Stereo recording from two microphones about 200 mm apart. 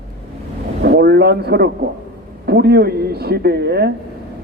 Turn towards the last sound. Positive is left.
turn(degrees=-55)  # may be behind; listen again after turning